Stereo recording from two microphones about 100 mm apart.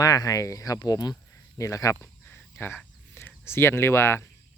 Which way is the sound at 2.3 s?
20° left (ahead or behind).